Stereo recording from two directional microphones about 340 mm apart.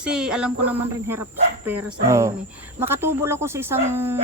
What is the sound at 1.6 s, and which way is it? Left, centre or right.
Speech, centre.